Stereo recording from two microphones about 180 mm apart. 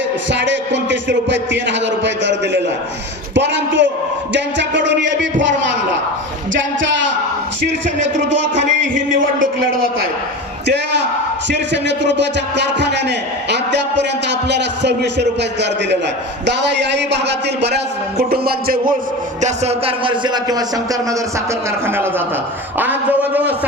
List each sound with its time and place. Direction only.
0.3 s a man's voice: 80° right
4.4 s music: 80° right
6.5 s a sound: 90° right
8.3 s a sound: 85° right
11.4 s a man's voice: 75° right (ahead or behind); by 18.9 s 55° right (ahead or behind)
19.4 s music: 40° right (ahead or behind); by 20.7 s 20° right (ahead or behind)
21.8 s a man's voice: 15° right (ahead or behind)